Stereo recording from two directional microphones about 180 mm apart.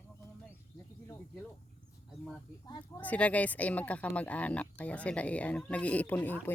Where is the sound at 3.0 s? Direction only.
10° left (ahead or behind).